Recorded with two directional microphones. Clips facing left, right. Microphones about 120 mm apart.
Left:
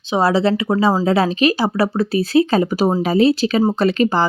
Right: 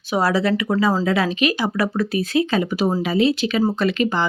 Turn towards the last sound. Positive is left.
turn(degrees=35)  # may be behind; listen again after turning